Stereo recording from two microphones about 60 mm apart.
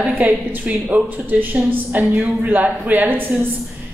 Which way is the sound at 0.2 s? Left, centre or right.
Right.